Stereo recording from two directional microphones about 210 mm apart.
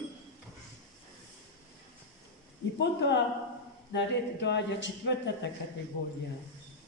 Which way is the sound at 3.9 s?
55° left (ahead or behind).